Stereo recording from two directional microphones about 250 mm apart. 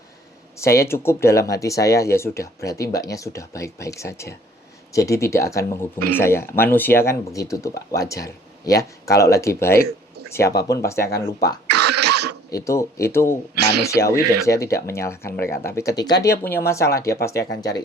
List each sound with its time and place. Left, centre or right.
0.6 s speech: centre
11.7 s cough: right
12.1 s a sound: right
12.5 s speech: centre